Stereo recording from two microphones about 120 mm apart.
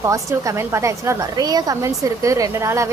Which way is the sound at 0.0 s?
25° right (ahead or behind).